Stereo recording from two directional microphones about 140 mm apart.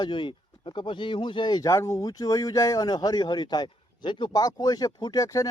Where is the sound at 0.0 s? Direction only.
35° left (ahead or behind).